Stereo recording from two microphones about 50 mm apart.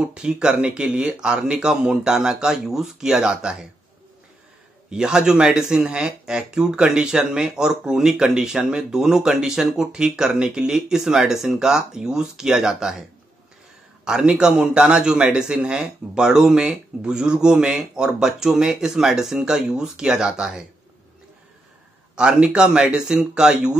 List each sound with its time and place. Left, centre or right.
0.0 s speech: centre
4.8 s speech: centre
14.0 s speech: centre
22.1 s speech: centre